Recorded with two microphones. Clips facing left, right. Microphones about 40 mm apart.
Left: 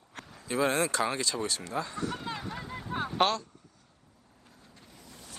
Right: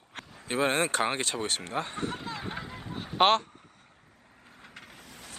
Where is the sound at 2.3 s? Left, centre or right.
Right.